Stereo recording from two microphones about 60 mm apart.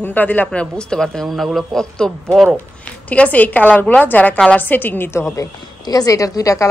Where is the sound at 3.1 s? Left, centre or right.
Left.